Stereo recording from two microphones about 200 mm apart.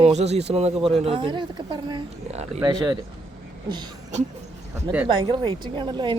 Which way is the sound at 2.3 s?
35° right (ahead or behind).